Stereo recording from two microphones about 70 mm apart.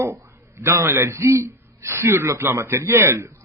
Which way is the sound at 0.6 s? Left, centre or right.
Right.